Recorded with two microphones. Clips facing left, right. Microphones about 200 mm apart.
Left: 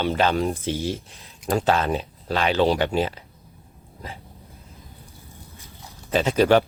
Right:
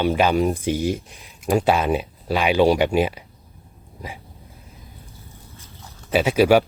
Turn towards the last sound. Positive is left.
turn(degrees=-10)  # may be behind; listen again after turning